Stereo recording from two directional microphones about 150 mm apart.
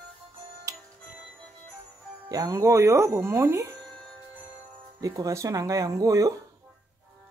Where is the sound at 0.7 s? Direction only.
20° right (ahead or behind).